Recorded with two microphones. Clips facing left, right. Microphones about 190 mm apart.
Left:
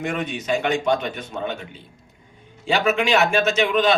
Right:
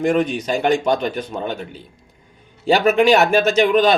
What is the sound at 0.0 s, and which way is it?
Speech, 35° right (ahead or behind).